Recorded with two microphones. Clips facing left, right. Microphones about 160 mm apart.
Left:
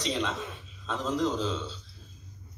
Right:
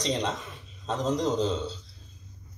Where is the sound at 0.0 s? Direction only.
35° right (ahead or behind).